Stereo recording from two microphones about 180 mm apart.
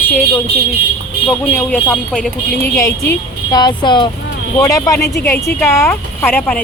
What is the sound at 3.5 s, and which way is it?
A woman's voice, 25° left (ahead or behind).